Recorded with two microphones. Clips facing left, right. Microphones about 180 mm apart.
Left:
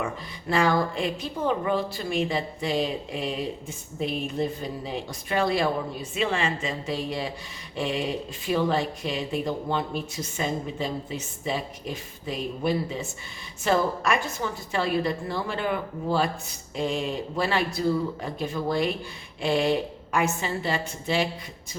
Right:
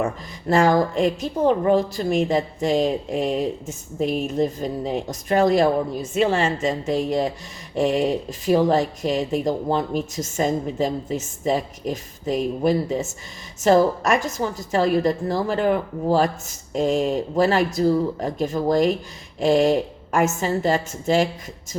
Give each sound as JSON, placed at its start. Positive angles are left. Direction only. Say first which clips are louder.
{"t": 0.0, "sound": "a woman's voice", "louder": "right 6 dB", "side_deg": -45}